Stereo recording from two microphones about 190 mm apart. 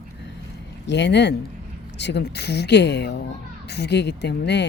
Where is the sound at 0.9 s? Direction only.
65° left (ahead or behind).